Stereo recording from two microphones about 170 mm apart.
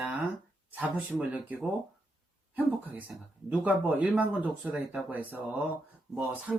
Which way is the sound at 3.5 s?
10° right (ahead or behind).